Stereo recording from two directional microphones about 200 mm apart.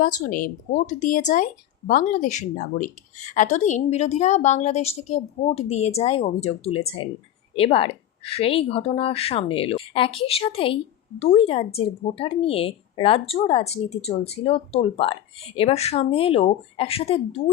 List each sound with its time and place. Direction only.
0.0 s a woman's voice: 40° left (ahead or behind)